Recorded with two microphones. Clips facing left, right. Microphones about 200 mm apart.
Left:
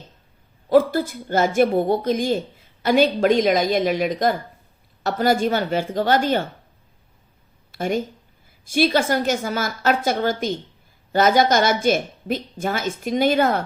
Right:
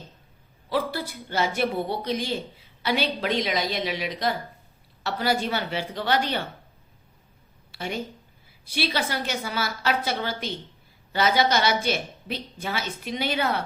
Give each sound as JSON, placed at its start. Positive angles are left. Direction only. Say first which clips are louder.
{"t": 0.7, "sound": "a woman's voice", "louder": "left 11 dB", "side_deg": 45}
{"t": 7.7, "sound": "a woman's voice", "louder": "left 8 dB", "side_deg": 45}